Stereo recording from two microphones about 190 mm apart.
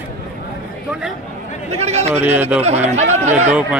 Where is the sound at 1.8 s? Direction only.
35° right (ahead or behind).